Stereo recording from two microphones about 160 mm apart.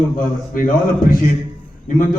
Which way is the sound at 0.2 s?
60° left (ahead or behind).